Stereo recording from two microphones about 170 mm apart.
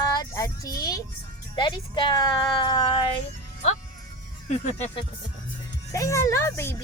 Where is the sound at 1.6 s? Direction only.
25° left (ahead or behind).